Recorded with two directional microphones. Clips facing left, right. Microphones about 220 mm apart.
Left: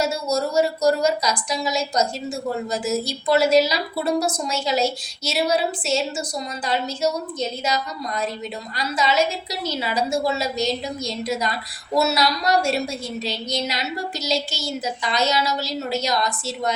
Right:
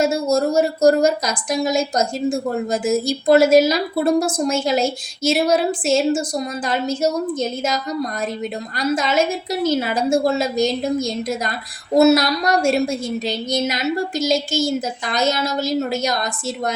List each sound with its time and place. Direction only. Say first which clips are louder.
0.0 s a woman's voice: right 5 dB; 50° right (ahead or behind)
8.8 s a woman's voice: right 3 dB; 50° right (ahead or behind)